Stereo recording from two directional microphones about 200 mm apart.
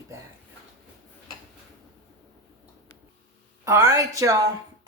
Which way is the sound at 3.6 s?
15° right (ahead or behind).